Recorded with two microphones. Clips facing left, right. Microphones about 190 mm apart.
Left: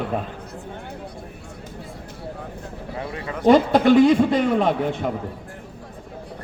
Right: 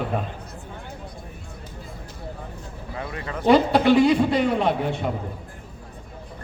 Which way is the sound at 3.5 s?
45° left (ahead or behind).